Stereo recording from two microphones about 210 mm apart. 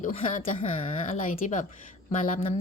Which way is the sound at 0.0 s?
35° left (ahead or behind).